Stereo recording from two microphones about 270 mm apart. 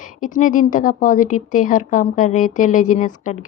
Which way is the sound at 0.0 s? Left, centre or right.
Left.